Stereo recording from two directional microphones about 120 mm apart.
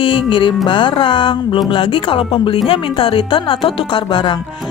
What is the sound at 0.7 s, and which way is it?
Music, 40° left (ahead or behind).